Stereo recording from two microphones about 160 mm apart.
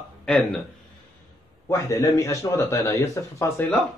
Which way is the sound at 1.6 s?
20° left (ahead or behind).